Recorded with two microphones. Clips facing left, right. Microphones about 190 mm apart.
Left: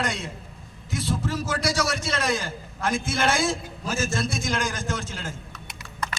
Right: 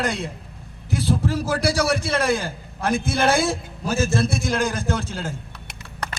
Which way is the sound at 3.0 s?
65° right (ahead or behind).